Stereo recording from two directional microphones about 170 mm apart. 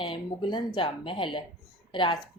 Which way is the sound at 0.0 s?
30° left (ahead or behind).